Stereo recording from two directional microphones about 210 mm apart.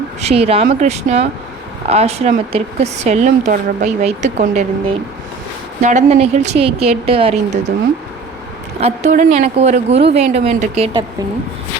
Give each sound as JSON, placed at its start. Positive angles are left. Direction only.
{"t": 0.2, "sound": "a woman's voice", "side_deg": -30}
{"t": 8.8, "sound": "speech", "side_deg": -35}